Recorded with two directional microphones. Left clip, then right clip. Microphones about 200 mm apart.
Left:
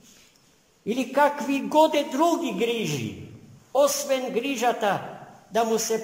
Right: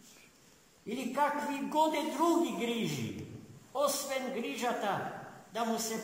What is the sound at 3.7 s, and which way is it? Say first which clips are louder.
A man's voice: left 11 dB; 55° left (ahead or behind).